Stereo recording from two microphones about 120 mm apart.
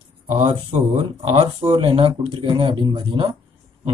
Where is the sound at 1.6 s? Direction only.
45° right (ahead or behind).